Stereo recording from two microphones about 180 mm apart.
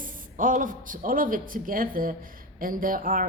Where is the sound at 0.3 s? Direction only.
50° right (ahead or behind).